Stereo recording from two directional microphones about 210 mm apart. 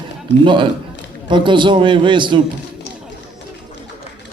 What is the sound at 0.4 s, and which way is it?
A man's voice, 25° right (ahead or behind).